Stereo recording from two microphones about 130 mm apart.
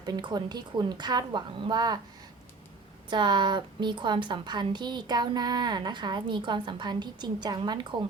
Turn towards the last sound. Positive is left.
turn(degrees=-35)  # may be behind; listen again after turning